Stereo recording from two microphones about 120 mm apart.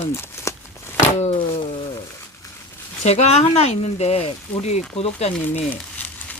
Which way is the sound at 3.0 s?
65° left (ahead or behind).